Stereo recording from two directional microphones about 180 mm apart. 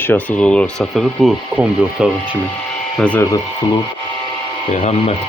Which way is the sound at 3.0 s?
5° left (ahead or behind).